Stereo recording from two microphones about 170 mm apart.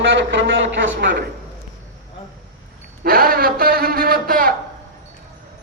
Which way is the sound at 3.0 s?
60° right (ahead or behind).